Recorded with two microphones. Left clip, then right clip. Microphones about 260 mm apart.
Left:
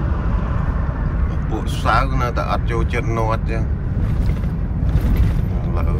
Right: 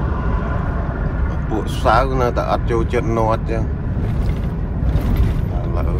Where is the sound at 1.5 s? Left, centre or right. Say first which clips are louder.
Right 3 dB; centre.